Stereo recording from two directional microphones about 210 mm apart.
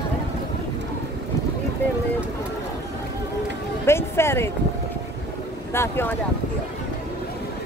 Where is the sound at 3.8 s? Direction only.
10° left (ahead or behind).